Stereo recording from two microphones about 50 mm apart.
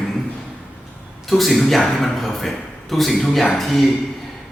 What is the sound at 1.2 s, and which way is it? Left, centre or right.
A woman's voice, centre.